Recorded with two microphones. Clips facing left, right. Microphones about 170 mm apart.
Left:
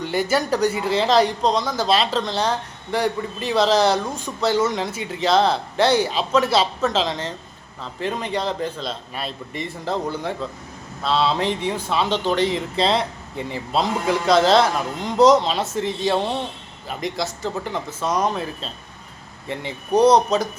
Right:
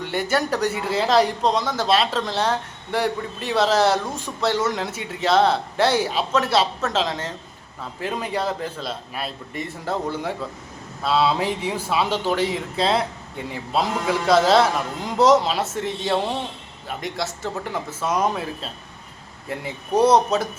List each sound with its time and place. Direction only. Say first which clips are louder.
0.0 s speech: left 2 dB; centre (ahead or behind)